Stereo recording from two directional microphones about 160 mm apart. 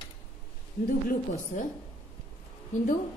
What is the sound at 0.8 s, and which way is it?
Speech, 65° left (ahead or behind).